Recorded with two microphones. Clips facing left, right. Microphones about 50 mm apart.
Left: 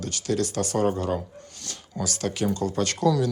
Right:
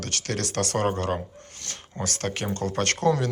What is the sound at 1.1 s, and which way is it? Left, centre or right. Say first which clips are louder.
Speech: left 1 dB; right.